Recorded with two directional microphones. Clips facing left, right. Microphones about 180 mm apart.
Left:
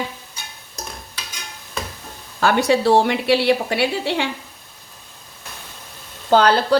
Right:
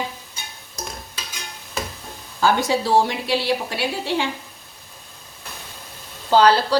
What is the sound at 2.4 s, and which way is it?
A woman's voice, 65° left (ahead or behind).